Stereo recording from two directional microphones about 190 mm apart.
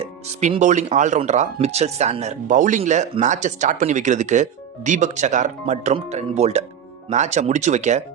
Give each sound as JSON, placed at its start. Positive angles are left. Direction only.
{"t": 0.0, "sound": "speech", "side_deg": -35}